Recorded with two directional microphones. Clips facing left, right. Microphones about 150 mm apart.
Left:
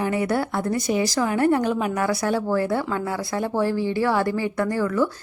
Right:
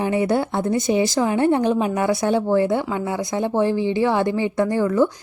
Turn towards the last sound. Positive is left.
turn(degrees=-25)  # may be behind; listen again after turning